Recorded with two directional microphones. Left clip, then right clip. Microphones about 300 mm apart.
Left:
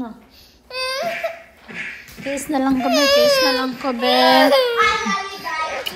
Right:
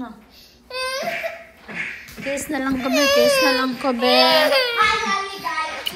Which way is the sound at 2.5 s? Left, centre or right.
Centre.